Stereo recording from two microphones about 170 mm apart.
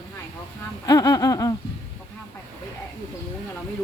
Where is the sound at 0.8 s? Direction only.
20° left (ahead or behind).